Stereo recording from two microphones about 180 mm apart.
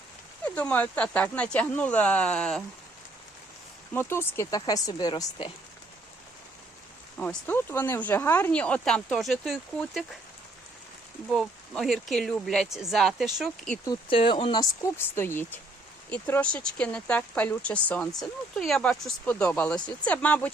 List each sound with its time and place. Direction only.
0.4 s speech: 10° left (ahead or behind)
3.9 s speech: 15° left (ahead or behind)
7.2 s speech: 10° left (ahead or behind)
11.3 s speech: centre (ahead or behind)
13.8 s speech: 25° left (ahead or behind); by 20.5 s 10° left (ahead or behind)